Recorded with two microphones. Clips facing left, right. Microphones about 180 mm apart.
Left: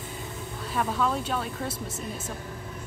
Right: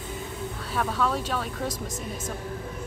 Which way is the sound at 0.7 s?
5° left (ahead or behind).